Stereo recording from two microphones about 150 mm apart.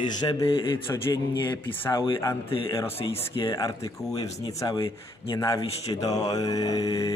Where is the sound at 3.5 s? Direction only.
20° left (ahead or behind).